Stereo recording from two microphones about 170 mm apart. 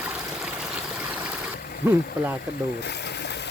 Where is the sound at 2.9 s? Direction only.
80° left.